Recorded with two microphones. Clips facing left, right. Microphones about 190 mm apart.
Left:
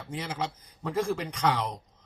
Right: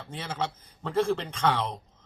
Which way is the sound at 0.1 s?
15° left (ahead or behind).